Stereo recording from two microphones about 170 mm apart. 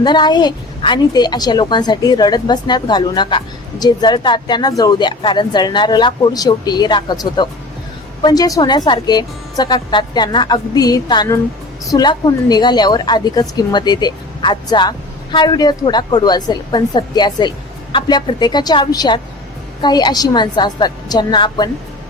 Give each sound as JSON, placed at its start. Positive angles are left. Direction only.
{"t": 0.0, "sound": "a woman's voice", "side_deg": 25}